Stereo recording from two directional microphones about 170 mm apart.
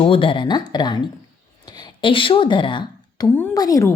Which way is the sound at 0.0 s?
30° left (ahead or behind).